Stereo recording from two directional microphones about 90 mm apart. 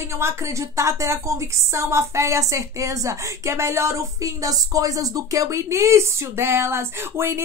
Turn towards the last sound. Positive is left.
turn(degrees=-25)  # may be behind; listen again after turning